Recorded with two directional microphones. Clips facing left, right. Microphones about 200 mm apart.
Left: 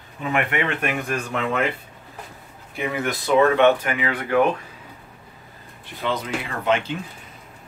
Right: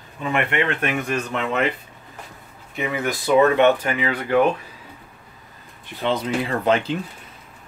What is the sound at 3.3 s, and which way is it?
Speech, 15° right (ahead or behind).